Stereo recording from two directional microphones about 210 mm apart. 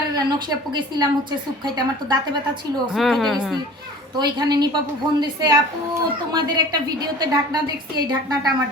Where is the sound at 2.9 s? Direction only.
Centre (ahead or behind).